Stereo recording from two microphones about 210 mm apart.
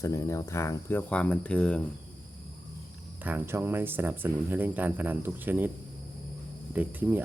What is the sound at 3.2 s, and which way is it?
Speech, 10° right (ahead or behind).